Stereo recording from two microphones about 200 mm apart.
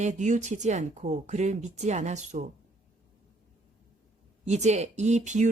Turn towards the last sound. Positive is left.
turn(degrees=-35)  # may be behind; listen again after turning